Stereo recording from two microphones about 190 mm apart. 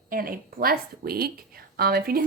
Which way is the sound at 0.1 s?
50° right (ahead or behind).